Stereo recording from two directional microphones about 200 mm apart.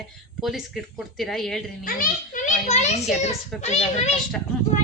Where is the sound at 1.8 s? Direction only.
45° left (ahead or behind).